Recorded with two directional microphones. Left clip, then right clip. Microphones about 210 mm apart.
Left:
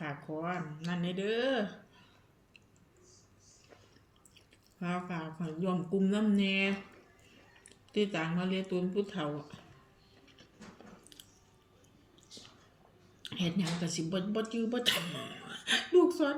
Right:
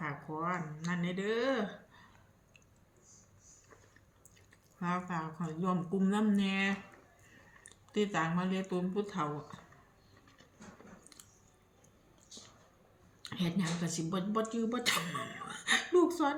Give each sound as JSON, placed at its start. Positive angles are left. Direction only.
{"t": 0.0, "sound": "a sound", "side_deg": -20}
{"t": 4.8, "sound": "speech", "side_deg": -25}
{"t": 7.9, "sound": "speech", "side_deg": -25}
{"t": 13.3, "sound": "speech", "side_deg": -25}